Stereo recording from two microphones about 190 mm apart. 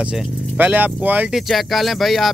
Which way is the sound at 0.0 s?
5° right (ahead or behind).